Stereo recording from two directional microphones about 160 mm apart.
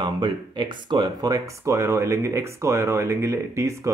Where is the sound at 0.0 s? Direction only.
30° right (ahead or behind).